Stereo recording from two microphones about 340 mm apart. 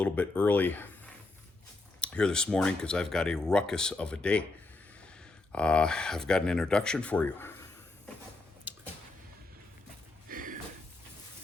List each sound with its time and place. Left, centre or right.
0.0 s speech: centre
2.0 s speech: centre
5.5 s speech: centre
10.2 s a sound: right